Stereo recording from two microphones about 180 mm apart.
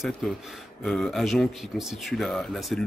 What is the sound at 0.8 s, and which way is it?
Speech, 5° left (ahead or behind).